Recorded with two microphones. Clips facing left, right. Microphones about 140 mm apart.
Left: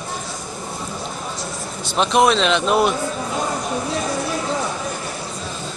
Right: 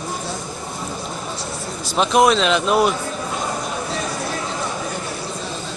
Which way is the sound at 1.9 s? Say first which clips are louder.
Right 1 dB; centre (ahead or behind).